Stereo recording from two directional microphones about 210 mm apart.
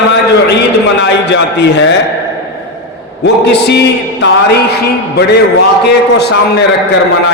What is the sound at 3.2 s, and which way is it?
Speech, 55° left (ahead or behind).